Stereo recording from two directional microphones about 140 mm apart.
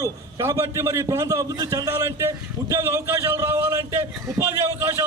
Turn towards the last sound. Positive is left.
turn(degrees=-15)  # may be behind; listen again after turning